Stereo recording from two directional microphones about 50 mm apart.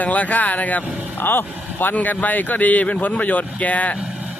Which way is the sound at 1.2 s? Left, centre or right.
Left.